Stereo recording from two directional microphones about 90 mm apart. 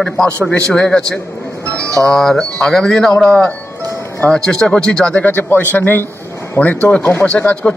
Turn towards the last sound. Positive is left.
turn(degrees=15)  # may be behind; listen again after turning